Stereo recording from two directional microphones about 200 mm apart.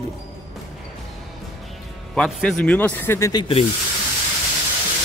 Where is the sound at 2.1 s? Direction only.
5° left (ahead or behind); by 3.5 s 20° left (ahead or behind).